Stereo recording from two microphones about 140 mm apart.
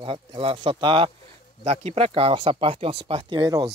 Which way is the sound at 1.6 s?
50° right (ahead or behind).